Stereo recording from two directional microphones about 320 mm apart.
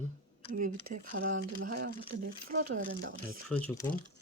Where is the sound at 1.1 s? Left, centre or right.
Right.